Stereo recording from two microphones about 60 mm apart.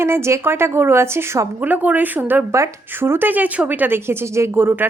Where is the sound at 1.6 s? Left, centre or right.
Right.